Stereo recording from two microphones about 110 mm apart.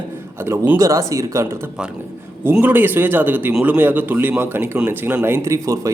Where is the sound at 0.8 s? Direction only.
30° right (ahead or behind).